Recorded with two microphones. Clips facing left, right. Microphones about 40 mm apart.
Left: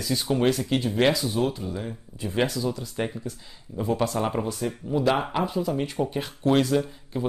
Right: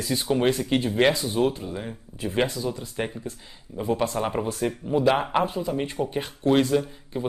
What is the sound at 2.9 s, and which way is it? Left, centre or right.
Speech, centre.